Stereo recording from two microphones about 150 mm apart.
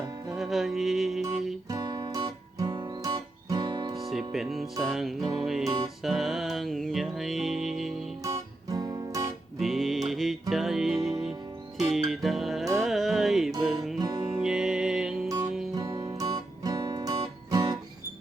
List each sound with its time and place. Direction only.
0.3 s music: centre (ahead or behind)
1.7 s guitar: 25° right (ahead or behind)
3.9 s music: centre (ahead or behind)
8.7 s music: 25° right (ahead or behind)
9.6 s music: centre (ahead or behind)
14.0 s music: 30° right (ahead or behind)
14.3 s music: 5° right (ahead or behind)
15.7 s music: 25° right (ahead or behind)